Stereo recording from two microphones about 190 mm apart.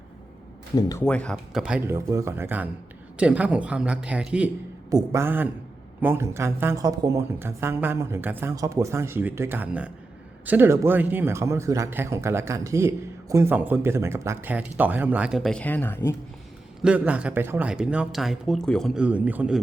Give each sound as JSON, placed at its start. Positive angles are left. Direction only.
{"t": 0.8, "sound": "speech", "side_deg": 20}
{"t": 1.0, "sound": "a man's voice", "side_deg": 5}
{"t": 4.9, "sound": "a man's voice", "side_deg": -15}
{"t": 16.8, "sound": "speech", "side_deg": -5}